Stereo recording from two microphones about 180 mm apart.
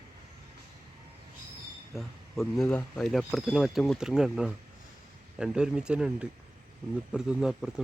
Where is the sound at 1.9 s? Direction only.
Centre (ahead or behind).